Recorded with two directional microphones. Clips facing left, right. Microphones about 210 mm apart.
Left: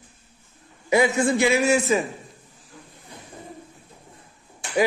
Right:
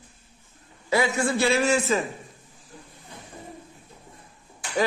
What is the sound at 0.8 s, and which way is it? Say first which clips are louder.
A man's voice: left 4 dB; 20° left (ahead or behind).